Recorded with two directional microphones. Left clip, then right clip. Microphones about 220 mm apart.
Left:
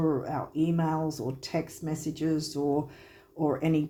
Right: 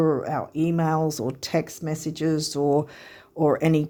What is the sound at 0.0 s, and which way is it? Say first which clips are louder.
Speech: right 6 dB; 50° right (ahead or behind).